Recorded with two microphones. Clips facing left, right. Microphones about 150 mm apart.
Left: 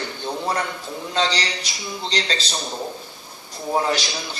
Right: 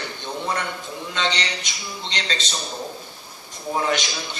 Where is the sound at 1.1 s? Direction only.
35° left (ahead or behind).